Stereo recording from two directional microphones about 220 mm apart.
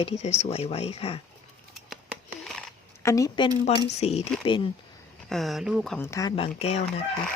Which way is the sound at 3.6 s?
30° left (ahead or behind).